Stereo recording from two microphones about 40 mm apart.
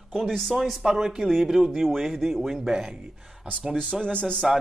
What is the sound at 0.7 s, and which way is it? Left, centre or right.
Speech, centre.